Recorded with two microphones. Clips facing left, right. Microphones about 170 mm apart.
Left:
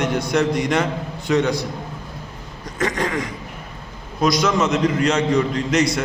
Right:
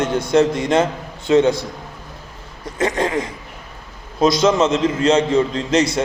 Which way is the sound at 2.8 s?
25° right (ahead or behind).